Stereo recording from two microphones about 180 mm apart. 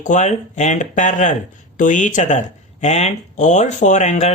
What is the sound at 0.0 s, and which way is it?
Speech, 40° left (ahead or behind).